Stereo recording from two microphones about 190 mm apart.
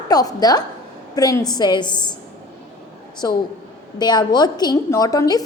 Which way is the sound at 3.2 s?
20° left (ahead or behind).